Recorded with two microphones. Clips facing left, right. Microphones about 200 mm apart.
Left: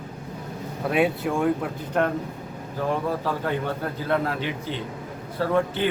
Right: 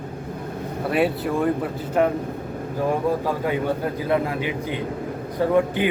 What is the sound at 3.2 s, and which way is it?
A man's voice, 10° right (ahead or behind).